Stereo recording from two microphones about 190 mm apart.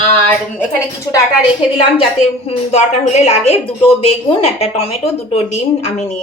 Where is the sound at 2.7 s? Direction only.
35° left (ahead or behind).